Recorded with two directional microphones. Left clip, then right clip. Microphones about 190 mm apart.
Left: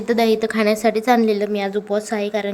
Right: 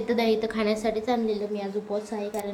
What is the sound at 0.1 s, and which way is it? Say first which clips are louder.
A woman's voice: left 8 dB; 35° left (ahead or behind).